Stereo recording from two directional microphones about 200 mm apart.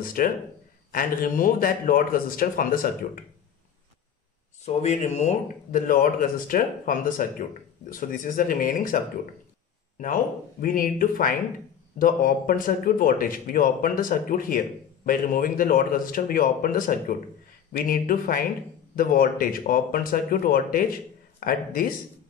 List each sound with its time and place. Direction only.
0.0 s speech: 45° left (ahead or behind)
4.6 s speech: 35° left (ahead or behind)